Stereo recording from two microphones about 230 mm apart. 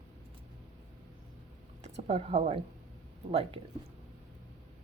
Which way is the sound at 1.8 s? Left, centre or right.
Right.